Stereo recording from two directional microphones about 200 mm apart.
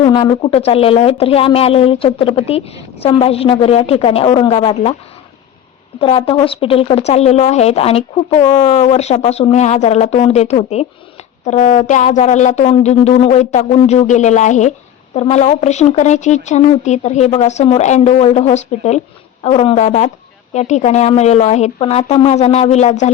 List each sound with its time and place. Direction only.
0.0 s speech: 25° left (ahead or behind)
6.0 s speech: 25° left (ahead or behind)